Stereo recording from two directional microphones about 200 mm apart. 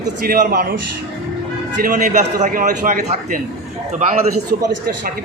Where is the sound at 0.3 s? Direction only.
45° right (ahead or behind).